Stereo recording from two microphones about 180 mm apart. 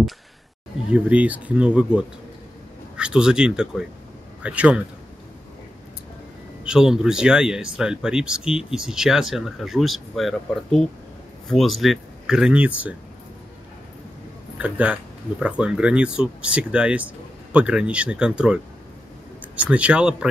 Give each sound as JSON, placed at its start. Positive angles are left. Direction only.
{"t": 0.8, "sound": "speech", "side_deg": -5}
{"t": 6.6, "sound": "speech", "side_deg": -5}
{"t": 14.6, "sound": "speech", "side_deg": -5}